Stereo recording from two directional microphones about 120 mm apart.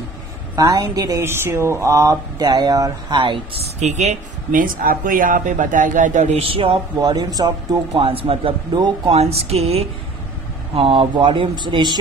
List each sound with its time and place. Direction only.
0.6 s speech: 30° right (ahead or behind)
3.2 s speech: 40° right (ahead or behind)
3.6 s a woman's voice: 75° right (ahead or behind)
5.0 s a man's voice: 90° right
6.4 s speech: 50° right (ahead or behind)
7.0 s speech: 35° right (ahead or behind)
8.0 s speech: 50° right (ahead or behind)
9.1 s speech: 60° right (ahead or behind); by 12.0 s 40° right (ahead or behind)